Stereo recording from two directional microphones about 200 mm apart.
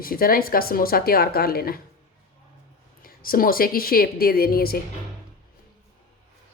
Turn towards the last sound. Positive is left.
turn(degrees=50)  # may be behind; listen again after turning